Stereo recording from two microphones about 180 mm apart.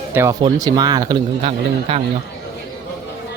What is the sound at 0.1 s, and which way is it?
Speech, 15° right (ahead or behind).